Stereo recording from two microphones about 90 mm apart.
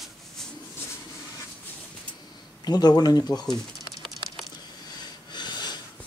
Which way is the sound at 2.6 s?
50° left (ahead or behind).